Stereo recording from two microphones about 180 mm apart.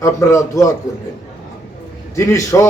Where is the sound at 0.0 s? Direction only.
15° left (ahead or behind).